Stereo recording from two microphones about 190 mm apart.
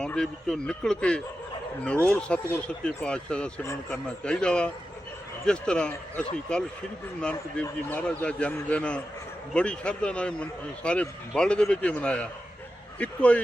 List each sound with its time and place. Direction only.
0.0 s speech: 5° left (ahead or behind)